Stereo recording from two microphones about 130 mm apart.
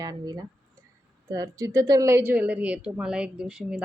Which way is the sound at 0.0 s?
30° right (ahead or behind).